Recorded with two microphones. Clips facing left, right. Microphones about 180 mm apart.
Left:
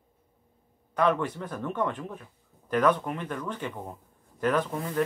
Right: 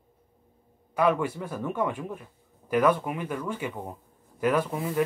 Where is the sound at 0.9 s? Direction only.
10° right (ahead or behind).